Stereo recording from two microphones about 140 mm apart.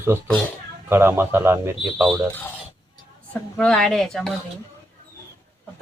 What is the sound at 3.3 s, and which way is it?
A woman's voice, 5° left (ahead or behind).